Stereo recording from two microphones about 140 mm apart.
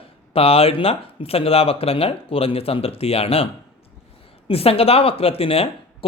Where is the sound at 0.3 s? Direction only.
45° left (ahead or behind).